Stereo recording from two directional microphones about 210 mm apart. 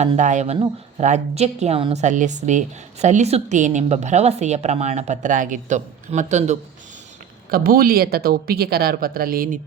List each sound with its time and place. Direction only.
0.0 s a woman's voice: 35° right (ahead or behind)